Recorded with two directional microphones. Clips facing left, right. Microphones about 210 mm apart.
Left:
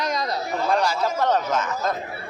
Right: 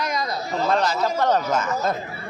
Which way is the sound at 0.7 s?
10° left (ahead or behind).